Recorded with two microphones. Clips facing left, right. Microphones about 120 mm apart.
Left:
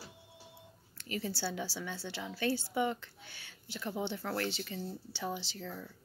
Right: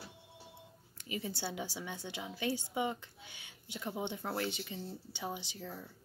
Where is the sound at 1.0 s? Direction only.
15° right (ahead or behind).